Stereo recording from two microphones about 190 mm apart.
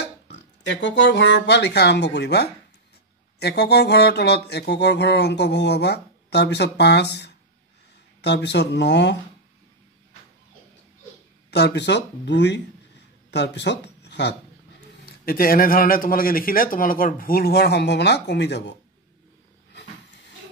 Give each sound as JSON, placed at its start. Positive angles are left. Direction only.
{"t": 0.0, "sound": "speech", "side_deg": 70}
{"t": 3.3, "sound": "a sound", "side_deg": 60}
{"t": 11.5, "sound": "speech", "side_deg": 65}
{"t": 15.0, "sound": "speech", "side_deg": 50}